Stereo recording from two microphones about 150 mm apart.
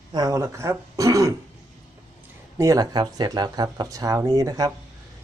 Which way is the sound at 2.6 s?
25° right (ahead or behind).